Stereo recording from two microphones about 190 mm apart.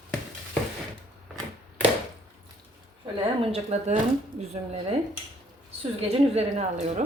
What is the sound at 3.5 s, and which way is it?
Speech, 35° right (ahead or behind).